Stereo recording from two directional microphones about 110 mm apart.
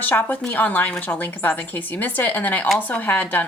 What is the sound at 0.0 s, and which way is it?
A woman's voice, 15° left (ahead or behind).